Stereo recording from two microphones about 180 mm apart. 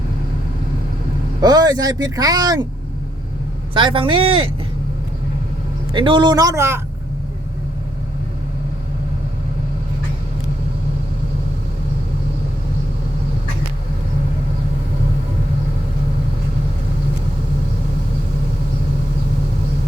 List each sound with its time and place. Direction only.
1.4 s speech: 20° right (ahead or behind)
3.8 s speech: 30° right (ahead or behind)
5.9 s speech: 25° right (ahead or behind)